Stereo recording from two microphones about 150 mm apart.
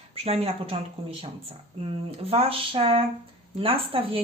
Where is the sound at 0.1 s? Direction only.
40° right (ahead or behind).